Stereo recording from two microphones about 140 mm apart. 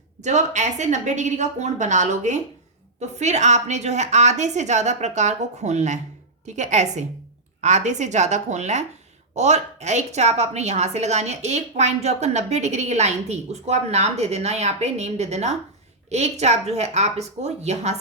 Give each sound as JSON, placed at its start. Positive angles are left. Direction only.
{"t": 0.2, "sound": "a woman's voice", "side_deg": -55}